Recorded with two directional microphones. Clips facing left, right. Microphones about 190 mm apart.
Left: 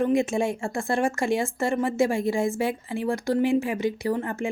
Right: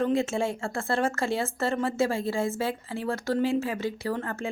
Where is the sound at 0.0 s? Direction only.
15° left (ahead or behind).